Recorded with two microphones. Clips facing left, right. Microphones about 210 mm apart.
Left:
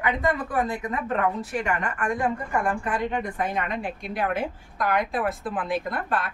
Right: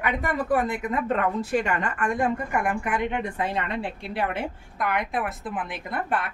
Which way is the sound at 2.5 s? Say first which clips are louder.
Even; 15° right (ahead or behind).